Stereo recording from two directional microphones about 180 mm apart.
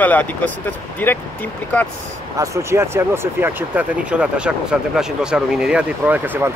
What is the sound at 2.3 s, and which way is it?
Speech, 15° right (ahead or behind).